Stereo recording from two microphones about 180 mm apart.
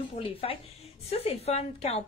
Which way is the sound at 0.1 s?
30° left (ahead or behind).